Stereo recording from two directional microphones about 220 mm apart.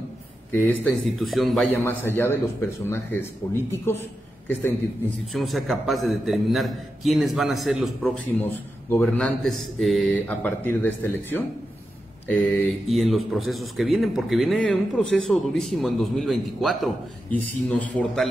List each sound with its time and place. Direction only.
0.5 s a man's voice: 10° left (ahead or behind)
5.3 s a man's voice: centre (ahead or behind)